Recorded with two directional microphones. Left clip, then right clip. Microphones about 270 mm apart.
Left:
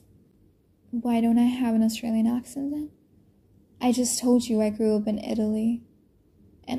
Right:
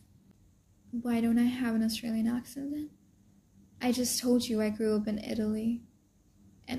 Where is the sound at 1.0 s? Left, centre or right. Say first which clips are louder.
Left 6 dB; centre.